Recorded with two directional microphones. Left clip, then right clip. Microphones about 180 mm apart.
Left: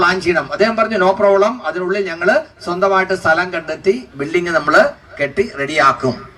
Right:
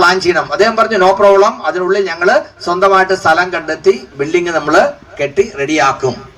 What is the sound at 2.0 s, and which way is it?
Speech, 30° right (ahead or behind).